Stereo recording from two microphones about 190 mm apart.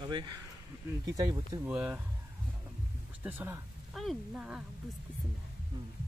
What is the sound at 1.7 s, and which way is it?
Speech, 5° right (ahead or behind).